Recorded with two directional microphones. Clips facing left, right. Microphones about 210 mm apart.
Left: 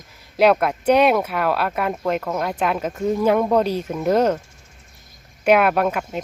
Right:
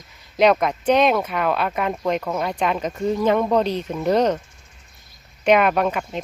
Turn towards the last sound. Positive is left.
turn(degrees=5)  # may be behind; listen again after turning